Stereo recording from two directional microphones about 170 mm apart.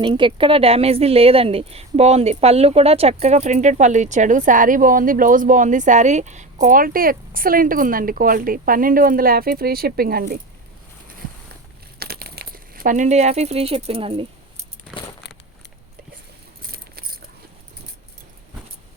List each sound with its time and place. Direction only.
0.0 s a woman's voice: 30° right (ahead or behind); by 10.4 s 60° right (ahead or behind)
11.9 s speech: 65° right (ahead or behind); by 14.3 s 35° right (ahead or behind)
16.7 s keys jangling: 60° right (ahead or behind)